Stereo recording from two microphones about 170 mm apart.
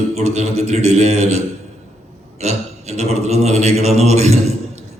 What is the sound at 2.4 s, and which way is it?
Mantra, 40° right (ahead or behind).